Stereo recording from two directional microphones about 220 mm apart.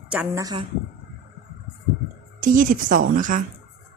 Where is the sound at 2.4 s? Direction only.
35° right (ahead or behind).